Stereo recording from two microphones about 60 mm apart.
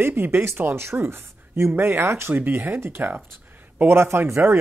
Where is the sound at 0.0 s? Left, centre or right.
Right.